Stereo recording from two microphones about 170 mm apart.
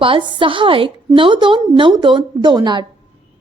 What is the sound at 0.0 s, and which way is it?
A woman's voice, 30° right (ahead or behind).